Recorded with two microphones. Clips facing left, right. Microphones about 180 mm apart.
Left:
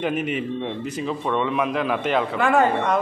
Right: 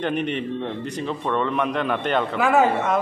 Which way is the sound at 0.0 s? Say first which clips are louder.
Even; 5° left (ahead or behind).